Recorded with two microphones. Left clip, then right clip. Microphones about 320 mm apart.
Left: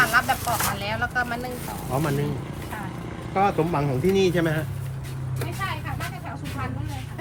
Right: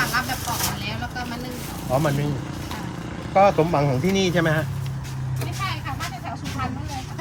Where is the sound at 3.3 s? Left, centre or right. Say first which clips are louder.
Right 5 dB; centre.